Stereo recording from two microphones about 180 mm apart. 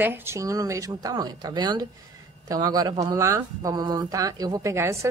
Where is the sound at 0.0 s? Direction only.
10° right (ahead or behind).